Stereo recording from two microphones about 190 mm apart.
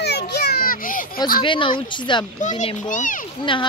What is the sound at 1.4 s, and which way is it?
Speech, 25° left (ahead or behind).